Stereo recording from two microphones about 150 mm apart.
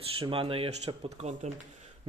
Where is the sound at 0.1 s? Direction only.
40° right (ahead or behind).